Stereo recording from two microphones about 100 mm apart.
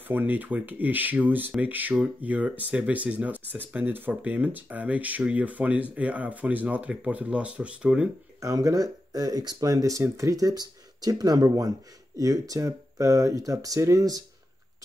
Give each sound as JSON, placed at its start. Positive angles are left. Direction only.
{"t": 0.1, "sound": "speech", "side_deg": -20}
{"t": 8.4, "sound": "speech", "side_deg": -35}